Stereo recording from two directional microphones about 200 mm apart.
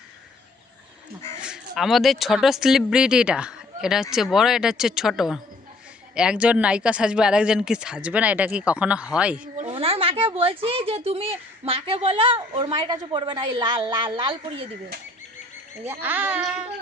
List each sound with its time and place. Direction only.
1.4 s speech: centre (ahead or behind)
9.6 s a woman's voice: 30° right (ahead or behind)
15.8 s speech: 10° right (ahead or behind)